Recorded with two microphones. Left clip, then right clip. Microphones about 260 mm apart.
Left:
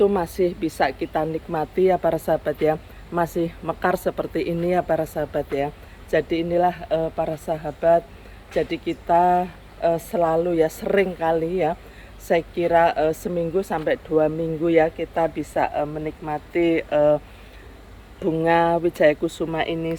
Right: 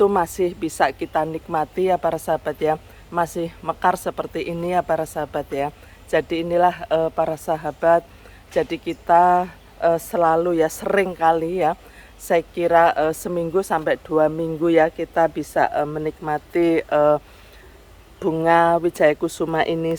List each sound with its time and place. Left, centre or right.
0.0 s speech: centre
18.2 s speech: centre